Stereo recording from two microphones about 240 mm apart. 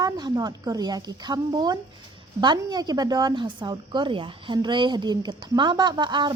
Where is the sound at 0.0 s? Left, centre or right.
Centre.